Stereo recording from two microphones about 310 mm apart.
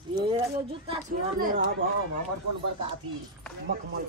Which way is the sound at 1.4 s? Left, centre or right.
Right.